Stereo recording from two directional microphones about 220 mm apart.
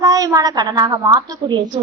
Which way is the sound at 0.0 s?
15° right (ahead or behind).